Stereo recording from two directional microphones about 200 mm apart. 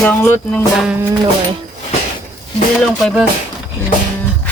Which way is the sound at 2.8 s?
Centre (ahead or behind).